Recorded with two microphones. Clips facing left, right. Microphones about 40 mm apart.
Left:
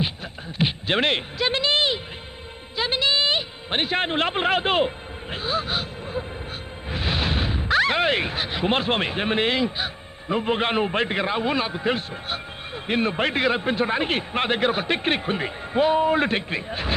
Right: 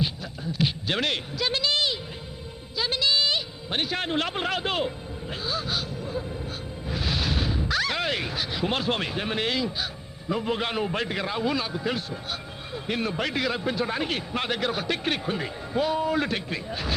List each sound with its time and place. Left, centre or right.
0.5 s speech: left